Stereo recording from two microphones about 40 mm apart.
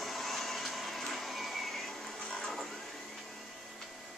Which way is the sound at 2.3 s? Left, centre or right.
Centre.